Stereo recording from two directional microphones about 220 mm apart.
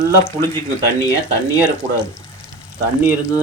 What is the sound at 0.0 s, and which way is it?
Speech, 10° left (ahead or behind).